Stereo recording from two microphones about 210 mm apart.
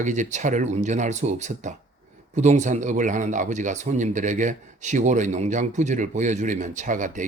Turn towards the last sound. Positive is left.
turn(degrees=-35)  # may be behind; listen again after turning